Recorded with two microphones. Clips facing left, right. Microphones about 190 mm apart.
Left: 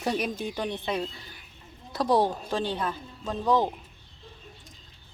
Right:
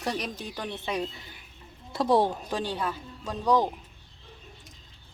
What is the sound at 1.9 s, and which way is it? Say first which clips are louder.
A woman's voice: even; 25° right (ahead or behind).